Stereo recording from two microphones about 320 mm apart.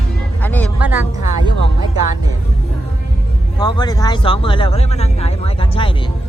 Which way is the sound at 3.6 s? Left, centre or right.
Centre.